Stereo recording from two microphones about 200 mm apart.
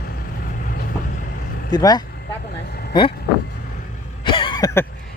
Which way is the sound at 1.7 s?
20° left (ahead or behind).